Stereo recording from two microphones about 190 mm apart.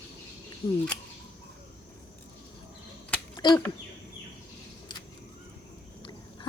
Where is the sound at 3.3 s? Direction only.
25° left (ahead or behind).